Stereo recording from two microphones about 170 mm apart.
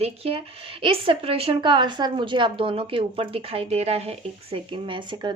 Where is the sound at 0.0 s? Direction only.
35° right (ahead or behind).